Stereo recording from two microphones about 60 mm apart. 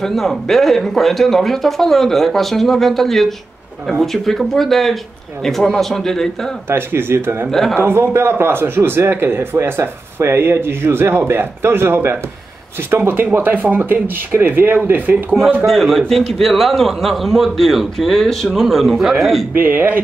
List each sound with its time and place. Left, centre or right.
0.0 s a man's voice: centre
6.7 s speech: right
15.6 s speech: centre
19.5 s speech: right